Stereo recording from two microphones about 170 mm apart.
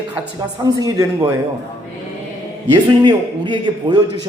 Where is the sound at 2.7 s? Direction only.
25° right (ahead or behind).